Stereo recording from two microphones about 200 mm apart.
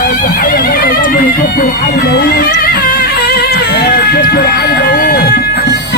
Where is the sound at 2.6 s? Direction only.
50° left (ahead or behind).